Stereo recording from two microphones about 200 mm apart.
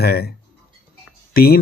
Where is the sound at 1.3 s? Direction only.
50° left (ahead or behind).